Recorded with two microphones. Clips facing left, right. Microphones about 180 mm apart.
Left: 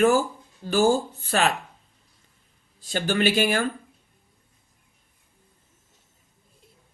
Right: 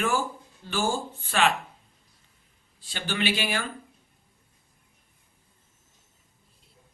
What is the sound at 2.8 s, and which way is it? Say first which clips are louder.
Speech: left 6 dB; 45° left (ahead or behind).